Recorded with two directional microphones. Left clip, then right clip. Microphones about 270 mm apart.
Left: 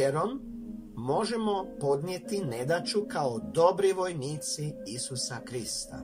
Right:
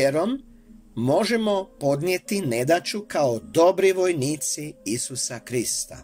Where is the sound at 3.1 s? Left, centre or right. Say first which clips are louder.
Right 8 dB; right.